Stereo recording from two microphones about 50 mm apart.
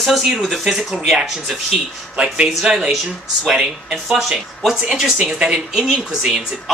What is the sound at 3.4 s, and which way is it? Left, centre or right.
Speech, centre.